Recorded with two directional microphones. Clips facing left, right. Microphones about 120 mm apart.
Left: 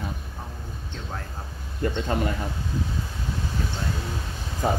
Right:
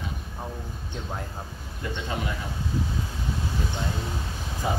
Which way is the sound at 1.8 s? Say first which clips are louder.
Left 7 dB; 50° left (ahead or behind).